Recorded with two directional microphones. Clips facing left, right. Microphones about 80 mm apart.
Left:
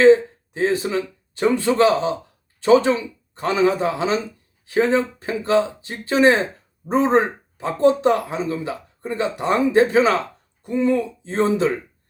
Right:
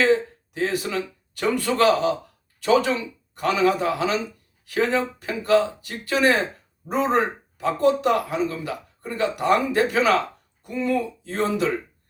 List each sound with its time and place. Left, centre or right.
0.0 s speech: left